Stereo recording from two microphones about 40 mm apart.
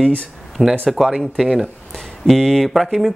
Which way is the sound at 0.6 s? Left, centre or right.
Right.